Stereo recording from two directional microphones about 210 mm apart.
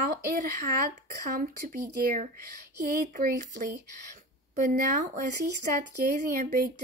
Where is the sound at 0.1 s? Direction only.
45° right (ahead or behind).